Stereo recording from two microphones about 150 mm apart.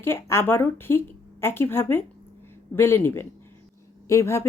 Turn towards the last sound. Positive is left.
turn(degrees=20)  # may be behind; listen again after turning